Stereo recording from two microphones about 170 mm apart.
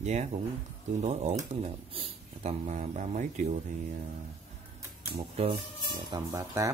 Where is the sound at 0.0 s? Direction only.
40° right (ahead or behind).